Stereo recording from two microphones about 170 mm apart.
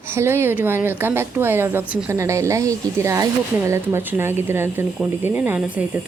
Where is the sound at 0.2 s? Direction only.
15° right (ahead or behind).